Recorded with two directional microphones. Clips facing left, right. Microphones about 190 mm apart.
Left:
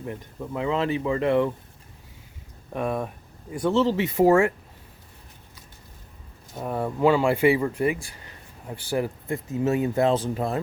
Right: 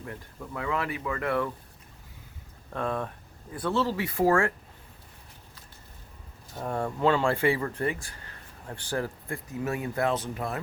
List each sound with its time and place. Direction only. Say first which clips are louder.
0.0 s speech: left 6 dB; 20° left (ahead or behind)
2.7 s speech: left 3 dB; 15° left (ahead or behind)
6.6 s speech: left 4 dB; 5° left (ahead or behind)
9.2 s speech: left 7 dB; 25° left (ahead or behind)